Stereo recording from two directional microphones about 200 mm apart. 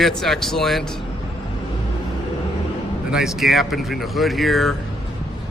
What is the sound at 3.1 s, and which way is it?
Speech, 5° right (ahead or behind).